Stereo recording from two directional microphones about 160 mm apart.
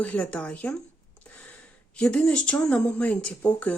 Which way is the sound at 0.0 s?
10° left (ahead or behind).